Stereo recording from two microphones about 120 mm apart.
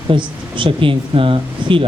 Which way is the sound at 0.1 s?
45° right (ahead or behind).